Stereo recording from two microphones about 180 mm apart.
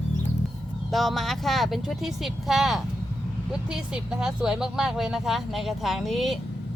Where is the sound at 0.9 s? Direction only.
Centre (ahead or behind).